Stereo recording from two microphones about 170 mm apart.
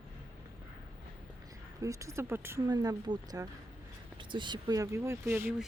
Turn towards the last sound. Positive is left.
turn(degrees=-15)  # may be behind; listen again after turning